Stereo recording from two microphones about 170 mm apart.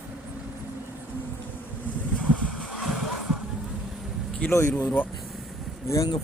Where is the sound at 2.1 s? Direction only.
Centre (ahead or behind).